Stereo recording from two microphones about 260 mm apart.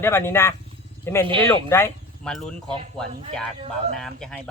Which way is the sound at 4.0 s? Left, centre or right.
Centre.